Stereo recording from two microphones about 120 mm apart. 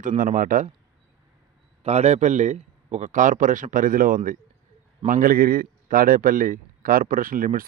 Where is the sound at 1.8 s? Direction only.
60° right (ahead or behind); by 4.2 s 90° right.